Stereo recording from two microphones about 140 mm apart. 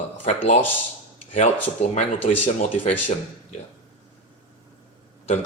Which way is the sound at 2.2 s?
65° left (ahead or behind).